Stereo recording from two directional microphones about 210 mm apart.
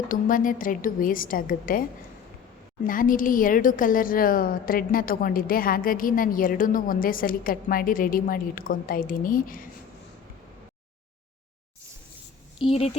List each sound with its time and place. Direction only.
0.1 s a woman's voice: 40° left (ahead or behind)
2.8 s a woman's voice: 40° left (ahead or behind)
12.6 s speech: 30° left (ahead or behind)